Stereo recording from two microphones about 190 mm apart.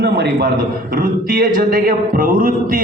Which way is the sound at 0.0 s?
55° right (ahead or behind).